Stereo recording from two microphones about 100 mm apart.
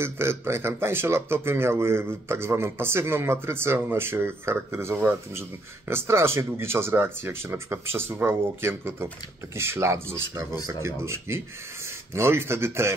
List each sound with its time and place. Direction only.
0.0 s speech: 25° right (ahead or behind)